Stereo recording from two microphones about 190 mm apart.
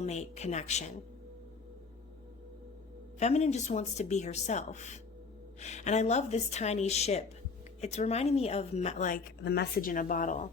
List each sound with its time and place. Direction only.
0.0 s speech: 35° left (ahead or behind)
3.2 s speech: 35° left (ahead or behind)